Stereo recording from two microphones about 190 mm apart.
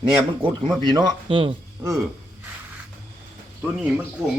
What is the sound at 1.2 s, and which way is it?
Speech, 30° right (ahead or behind).